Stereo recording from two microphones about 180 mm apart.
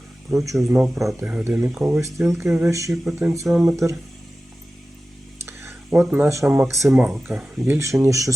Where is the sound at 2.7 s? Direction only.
15° right (ahead or behind).